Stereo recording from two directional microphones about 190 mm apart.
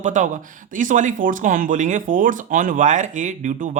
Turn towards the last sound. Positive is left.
turn(degrees=-40)  # may be behind; listen again after turning